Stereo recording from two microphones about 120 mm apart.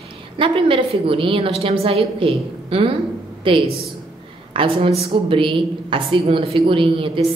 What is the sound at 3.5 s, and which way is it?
A woman's voice, 50° right (ahead or behind).